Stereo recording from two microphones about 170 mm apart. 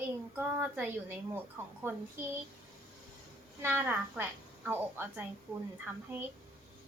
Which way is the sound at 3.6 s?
10° right (ahead or behind).